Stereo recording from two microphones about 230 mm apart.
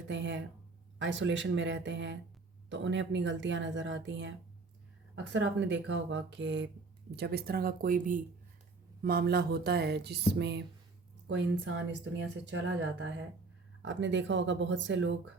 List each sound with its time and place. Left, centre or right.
0.1 s speech: right